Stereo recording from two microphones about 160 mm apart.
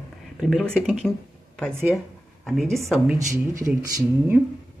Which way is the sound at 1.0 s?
5° left (ahead or behind).